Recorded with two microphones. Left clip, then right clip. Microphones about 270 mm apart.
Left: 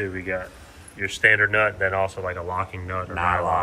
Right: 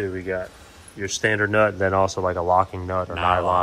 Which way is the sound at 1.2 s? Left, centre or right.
Right.